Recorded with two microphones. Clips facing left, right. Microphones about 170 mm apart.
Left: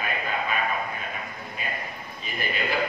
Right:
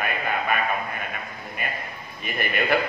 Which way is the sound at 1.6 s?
60° right (ahead or behind).